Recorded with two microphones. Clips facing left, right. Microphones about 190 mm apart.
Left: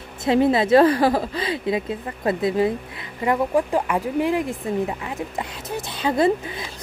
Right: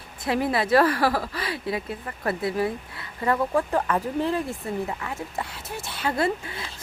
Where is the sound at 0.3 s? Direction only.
25° left (ahead or behind).